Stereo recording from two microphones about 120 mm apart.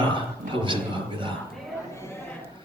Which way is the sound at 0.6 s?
45° right (ahead or behind).